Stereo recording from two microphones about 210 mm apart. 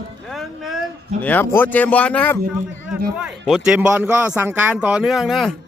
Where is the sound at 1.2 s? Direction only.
10° left (ahead or behind).